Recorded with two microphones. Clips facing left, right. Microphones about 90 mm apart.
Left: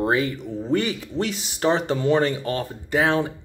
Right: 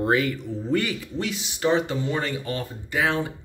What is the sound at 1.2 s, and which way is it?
Speech, 40° left (ahead or behind).